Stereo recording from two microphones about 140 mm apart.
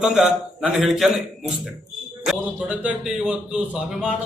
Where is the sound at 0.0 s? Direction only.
5° right (ahead or behind).